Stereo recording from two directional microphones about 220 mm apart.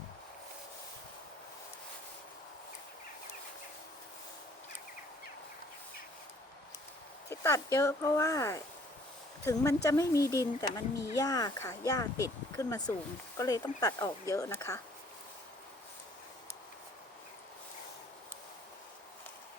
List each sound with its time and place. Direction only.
7.3 s speech: 15° left (ahead or behind)